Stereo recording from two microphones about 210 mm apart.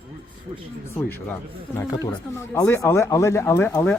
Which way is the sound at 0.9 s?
10° left (ahead or behind).